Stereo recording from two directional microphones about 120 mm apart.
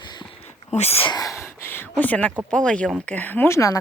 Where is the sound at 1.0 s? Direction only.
30° left (ahead or behind).